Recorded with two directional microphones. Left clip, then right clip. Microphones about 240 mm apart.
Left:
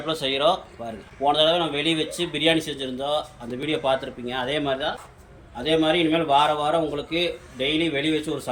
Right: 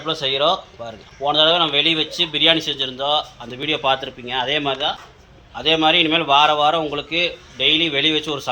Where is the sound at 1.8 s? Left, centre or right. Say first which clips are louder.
Right 6 dB; centre.